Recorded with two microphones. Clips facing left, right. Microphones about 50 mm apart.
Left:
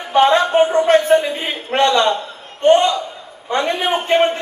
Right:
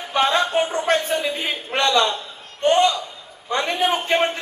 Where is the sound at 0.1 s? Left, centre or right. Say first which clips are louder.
Left 6 dB; left.